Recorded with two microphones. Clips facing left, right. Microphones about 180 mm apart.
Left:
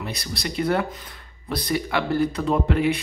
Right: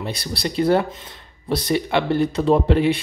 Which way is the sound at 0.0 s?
30° right (ahead or behind).